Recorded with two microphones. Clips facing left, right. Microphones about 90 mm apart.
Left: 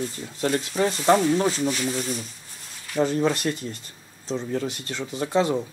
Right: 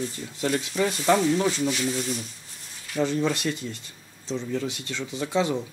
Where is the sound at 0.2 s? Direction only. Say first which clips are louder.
Left 2 dB; 45° left (ahead or behind).